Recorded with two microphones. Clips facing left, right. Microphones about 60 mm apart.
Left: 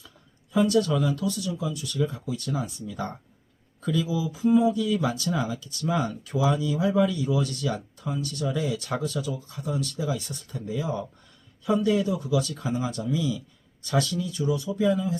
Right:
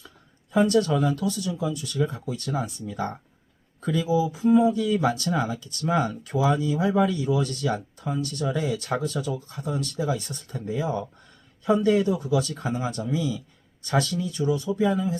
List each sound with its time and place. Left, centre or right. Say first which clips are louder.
0.5 s speech: right 1 dB; right
14.8 s speech: even; right